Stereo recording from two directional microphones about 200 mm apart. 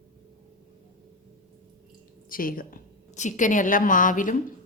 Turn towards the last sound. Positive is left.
turn(degrees=40)  # may be behind; listen again after turning